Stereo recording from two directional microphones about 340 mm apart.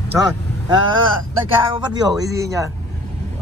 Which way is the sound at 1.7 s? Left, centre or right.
Centre.